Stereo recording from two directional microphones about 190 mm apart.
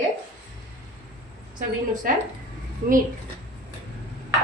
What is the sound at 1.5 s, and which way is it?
Speech, 45° right (ahead or behind).